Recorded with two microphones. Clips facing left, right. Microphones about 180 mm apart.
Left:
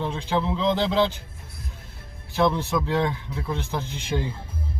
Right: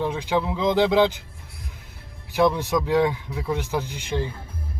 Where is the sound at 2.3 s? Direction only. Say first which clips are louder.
Right 2 dB; 15° right (ahead or behind).